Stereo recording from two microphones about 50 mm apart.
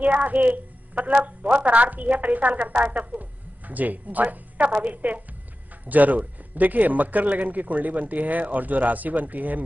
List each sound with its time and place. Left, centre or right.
0.0 s a woman's voice: right